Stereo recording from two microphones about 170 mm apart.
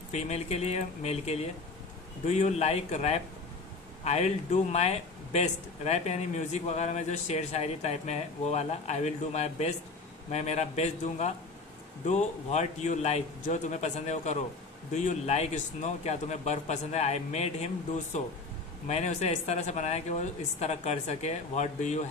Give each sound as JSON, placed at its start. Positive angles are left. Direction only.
{"t": 0.1, "sound": "a man's voice", "side_deg": 40}
{"t": 18.9, "sound": "a man's voice", "side_deg": 40}